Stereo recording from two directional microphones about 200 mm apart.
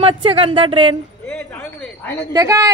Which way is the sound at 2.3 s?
15° right (ahead or behind).